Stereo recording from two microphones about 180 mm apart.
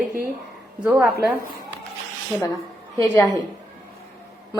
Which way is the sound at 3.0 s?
15° left (ahead or behind).